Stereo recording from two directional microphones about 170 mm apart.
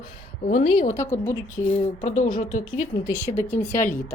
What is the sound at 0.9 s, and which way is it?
Speech, 15° left (ahead or behind).